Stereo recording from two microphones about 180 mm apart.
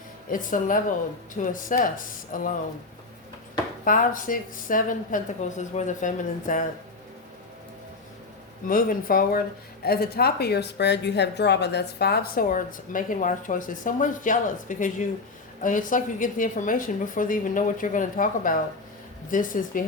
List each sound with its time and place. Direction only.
0.3 s a woman's voice: 50° left (ahead or behind)
3.8 s a woman's voice: 50° left (ahead or behind)
8.6 s a woman's voice: 50° left (ahead or behind)